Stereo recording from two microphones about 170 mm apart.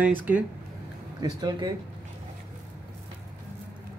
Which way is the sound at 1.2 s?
25° right (ahead or behind).